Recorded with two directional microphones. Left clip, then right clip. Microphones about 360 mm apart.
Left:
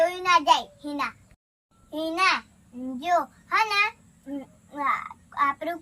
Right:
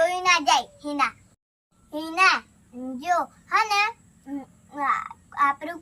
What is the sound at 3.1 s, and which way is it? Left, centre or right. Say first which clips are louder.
A child's voice: right 1 dB; centre.